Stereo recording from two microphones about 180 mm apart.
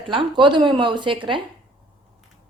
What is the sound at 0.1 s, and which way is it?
Speech, 25° right (ahead or behind).